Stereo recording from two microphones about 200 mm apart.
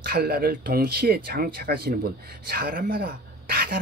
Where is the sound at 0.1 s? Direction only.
50° right (ahead or behind).